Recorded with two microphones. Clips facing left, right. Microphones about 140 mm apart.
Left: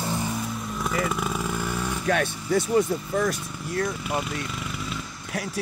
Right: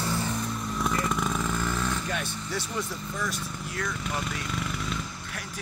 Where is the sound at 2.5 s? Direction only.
50° left (ahead or behind).